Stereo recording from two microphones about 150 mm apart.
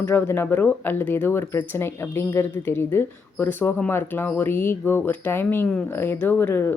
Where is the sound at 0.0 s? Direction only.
15° left (ahead or behind).